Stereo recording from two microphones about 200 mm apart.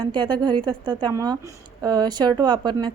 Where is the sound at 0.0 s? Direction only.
25° right (ahead or behind).